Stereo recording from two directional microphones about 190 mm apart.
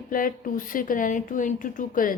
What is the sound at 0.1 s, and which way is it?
Speech, 45° left (ahead or behind).